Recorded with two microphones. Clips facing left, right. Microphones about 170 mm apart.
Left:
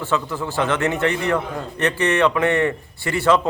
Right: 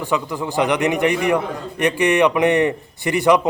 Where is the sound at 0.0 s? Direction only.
15° right (ahead or behind).